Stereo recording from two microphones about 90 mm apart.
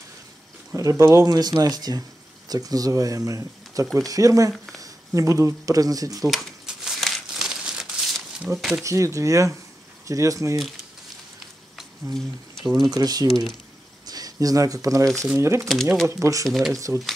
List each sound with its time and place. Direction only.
0.7 s speech: 35° right (ahead or behind)
1.2 s speech: 45° right (ahead or behind)
6.2 s crumpling: 5° right (ahead or behind)
8.5 s speech: 5° right (ahead or behind)
8.8 s speech: 35° right (ahead or behind)
11.7 s a sound: 5° left (ahead or behind)
12.8 s speech: 45° right (ahead or behind)
15.7 s speech: centre (ahead or behind)
16.1 s speech: 35° right (ahead or behind)
16.4 s speech: centre (ahead or behind)
16.7 s speech: 35° right (ahead or behind)